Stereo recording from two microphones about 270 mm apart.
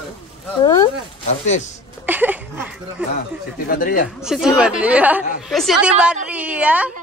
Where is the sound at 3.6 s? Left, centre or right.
Left.